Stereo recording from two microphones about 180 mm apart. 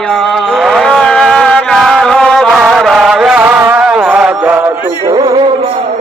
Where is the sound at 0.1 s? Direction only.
Centre (ahead or behind).